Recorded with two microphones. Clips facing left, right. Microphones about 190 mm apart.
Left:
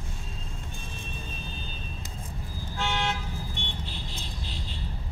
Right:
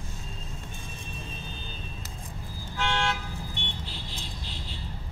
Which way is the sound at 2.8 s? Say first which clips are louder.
Right 1 dB; 15° left (ahead or behind).